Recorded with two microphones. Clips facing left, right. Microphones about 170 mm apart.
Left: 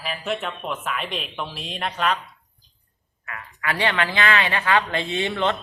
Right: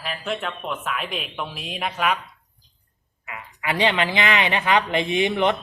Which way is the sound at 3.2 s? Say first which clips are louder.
Even; 15° right (ahead or behind).